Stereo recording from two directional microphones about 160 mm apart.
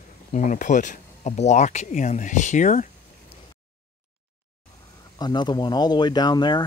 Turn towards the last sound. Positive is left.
turn(degrees=25)  # may be behind; listen again after turning